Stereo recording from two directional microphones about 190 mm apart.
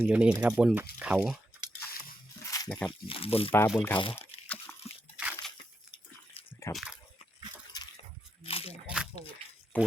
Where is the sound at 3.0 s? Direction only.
30° left (ahead or behind).